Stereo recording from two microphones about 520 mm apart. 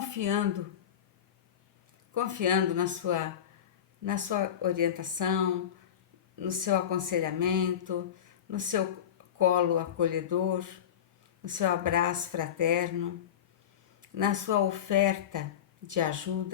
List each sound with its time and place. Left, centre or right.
0.0 s speech: right
2.1 s speech: right
6.4 s speech: right
14.0 s speech: right